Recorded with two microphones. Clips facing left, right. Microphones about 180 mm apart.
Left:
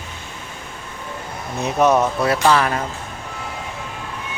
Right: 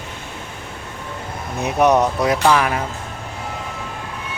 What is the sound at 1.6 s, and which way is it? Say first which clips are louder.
Speech: right 1 dB; 15° right (ahead or behind).